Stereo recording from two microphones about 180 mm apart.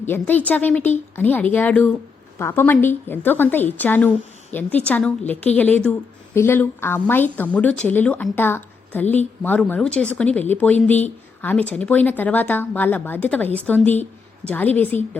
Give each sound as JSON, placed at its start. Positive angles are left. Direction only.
{"t": 0.0, "sound": "speech", "side_deg": 10}